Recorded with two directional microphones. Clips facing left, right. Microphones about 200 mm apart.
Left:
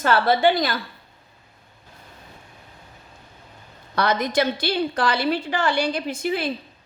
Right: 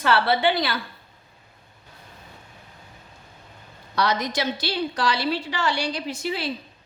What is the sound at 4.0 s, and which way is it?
A woman's voice, 55° left (ahead or behind).